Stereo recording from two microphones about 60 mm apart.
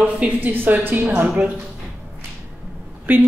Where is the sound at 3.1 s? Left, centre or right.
Right.